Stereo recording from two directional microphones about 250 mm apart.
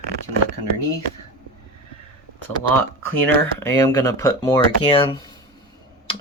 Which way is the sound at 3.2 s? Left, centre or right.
Centre.